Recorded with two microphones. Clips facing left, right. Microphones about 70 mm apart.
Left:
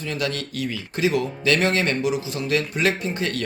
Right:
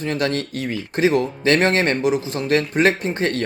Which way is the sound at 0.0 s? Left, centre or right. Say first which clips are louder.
Right 5 dB; right.